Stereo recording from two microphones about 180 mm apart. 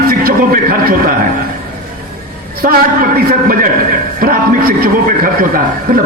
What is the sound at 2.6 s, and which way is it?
A man's voice, 55° right (ahead or behind).